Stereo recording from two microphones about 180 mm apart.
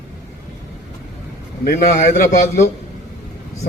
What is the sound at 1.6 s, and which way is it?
Speech, 50° left (ahead or behind).